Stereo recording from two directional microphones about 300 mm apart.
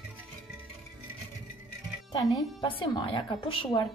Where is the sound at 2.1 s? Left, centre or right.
Centre.